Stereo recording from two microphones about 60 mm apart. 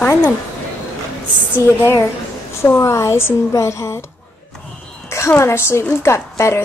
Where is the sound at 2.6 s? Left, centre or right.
Left.